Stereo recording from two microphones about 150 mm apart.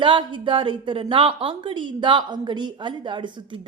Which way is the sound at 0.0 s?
35° right (ahead or behind).